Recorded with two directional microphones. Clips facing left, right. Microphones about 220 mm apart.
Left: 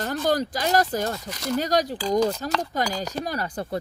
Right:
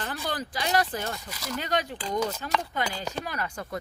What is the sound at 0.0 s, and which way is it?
Speech, 40° left (ahead or behind).